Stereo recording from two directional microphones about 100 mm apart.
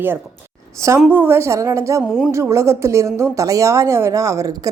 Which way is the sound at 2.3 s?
30° right (ahead or behind).